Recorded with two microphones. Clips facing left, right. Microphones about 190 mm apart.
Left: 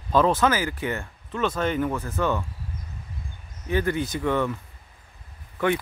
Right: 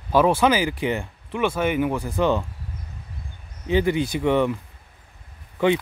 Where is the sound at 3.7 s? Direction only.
15° right (ahead or behind).